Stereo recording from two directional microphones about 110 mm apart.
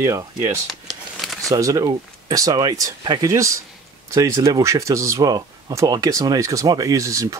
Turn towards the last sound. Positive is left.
turn(degrees=-30)  # may be behind; listen again after turning